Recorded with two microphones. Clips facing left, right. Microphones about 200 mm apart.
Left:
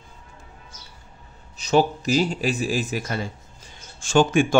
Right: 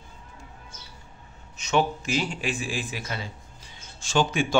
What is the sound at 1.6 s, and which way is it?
A man's voice, 35° left (ahead or behind).